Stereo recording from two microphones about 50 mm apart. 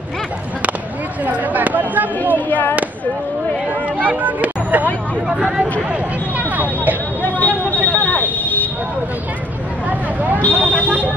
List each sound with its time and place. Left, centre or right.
1.2 s speech: right
2.3 s speech: left
4.2 s speech: right
5.3 s speech: centre
6.5 s a sound: right
7.3 s a sound: left
9.8 s vehicle: right